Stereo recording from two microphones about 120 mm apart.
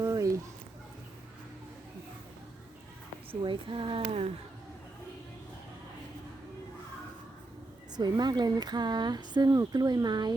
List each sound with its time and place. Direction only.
0.0 s a sound: 30° right (ahead or behind)
3.4 s speech: 45° right (ahead or behind)
7.9 s speech: 35° right (ahead or behind)